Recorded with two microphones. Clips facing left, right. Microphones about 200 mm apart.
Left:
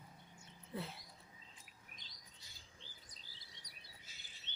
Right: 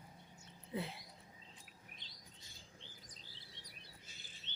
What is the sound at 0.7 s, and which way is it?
Speech, 15° right (ahead or behind).